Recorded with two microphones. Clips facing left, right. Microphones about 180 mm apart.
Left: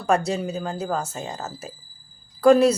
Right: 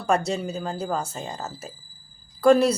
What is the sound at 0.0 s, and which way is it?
Speech, 30° right (ahead or behind).